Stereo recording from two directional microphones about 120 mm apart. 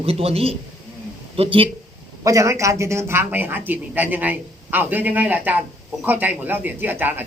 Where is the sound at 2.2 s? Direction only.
25° right (ahead or behind).